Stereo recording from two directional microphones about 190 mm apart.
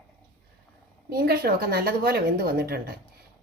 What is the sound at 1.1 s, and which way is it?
Speech, 55° right (ahead or behind).